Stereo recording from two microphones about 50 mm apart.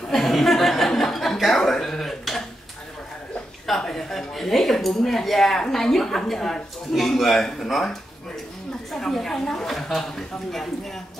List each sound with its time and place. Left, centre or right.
0.1 s chuckle: centre
3.6 s a woman's voice: centre